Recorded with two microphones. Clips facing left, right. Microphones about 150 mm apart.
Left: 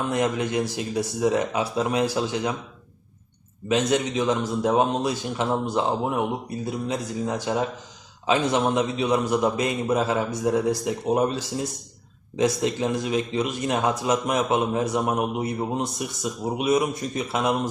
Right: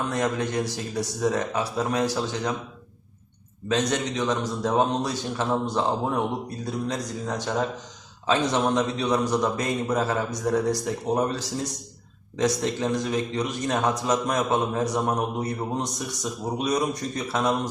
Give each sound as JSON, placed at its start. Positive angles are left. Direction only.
{"t": 0.1, "sound": "a man's voice", "side_deg": 15}
{"t": 3.7, "sound": "a man's voice", "side_deg": 5}